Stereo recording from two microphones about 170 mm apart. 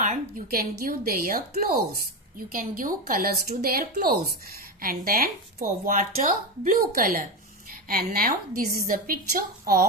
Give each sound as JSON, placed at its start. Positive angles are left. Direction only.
{"t": 0.0, "sound": "speech", "side_deg": -50}